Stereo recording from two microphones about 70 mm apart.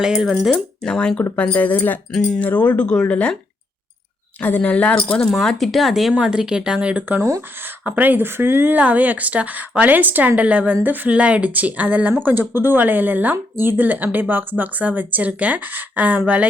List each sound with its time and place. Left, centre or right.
0.0 s speech: centre
0.5 s speech: centre
2.1 s speech: centre
2.4 s speech: left
4.4 s speech: left
5.3 s speech: centre; by 16.5 s right